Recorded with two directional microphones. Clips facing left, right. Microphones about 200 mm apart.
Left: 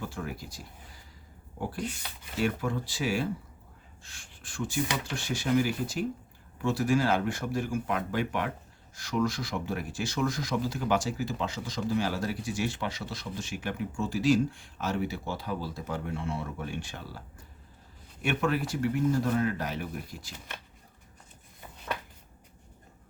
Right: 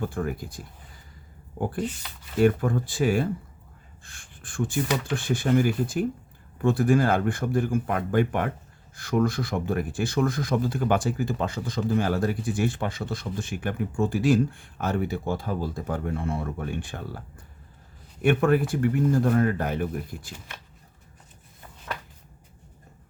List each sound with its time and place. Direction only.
0.0 s speech: 50° right (ahead or behind)